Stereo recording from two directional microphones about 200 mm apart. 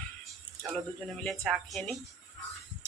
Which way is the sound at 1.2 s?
Centre (ahead or behind).